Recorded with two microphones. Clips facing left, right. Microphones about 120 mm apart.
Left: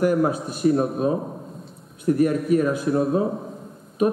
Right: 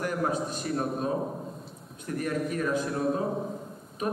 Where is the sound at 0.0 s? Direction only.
10° left (ahead or behind).